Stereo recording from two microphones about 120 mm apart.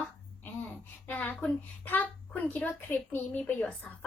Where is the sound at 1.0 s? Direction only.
15° left (ahead or behind).